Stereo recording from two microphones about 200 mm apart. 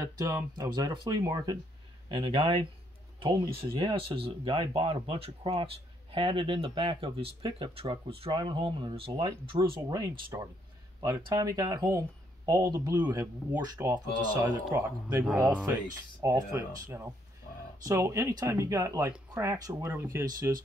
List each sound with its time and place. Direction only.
0.0 s speech: 15° right (ahead or behind)
15.2 s speech: 5° right (ahead or behind)
16.2 s speech: 15° right (ahead or behind)
17.8 s speech: 15° right (ahead or behind)